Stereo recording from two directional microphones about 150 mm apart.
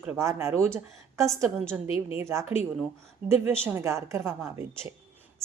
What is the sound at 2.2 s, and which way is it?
A woman's voice, 20° right (ahead or behind).